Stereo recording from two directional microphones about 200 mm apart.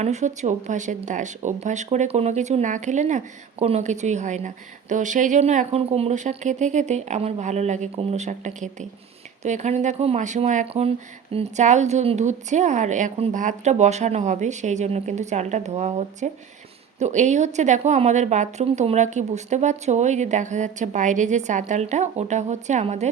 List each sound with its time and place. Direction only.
0.0 s speech: 35° right (ahead or behind)